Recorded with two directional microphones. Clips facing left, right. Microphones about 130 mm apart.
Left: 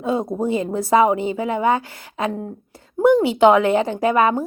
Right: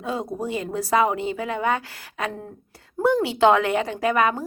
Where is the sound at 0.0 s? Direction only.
25° left (ahead or behind).